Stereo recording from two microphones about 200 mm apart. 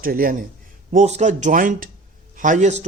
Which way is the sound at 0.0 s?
45° right (ahead or behind).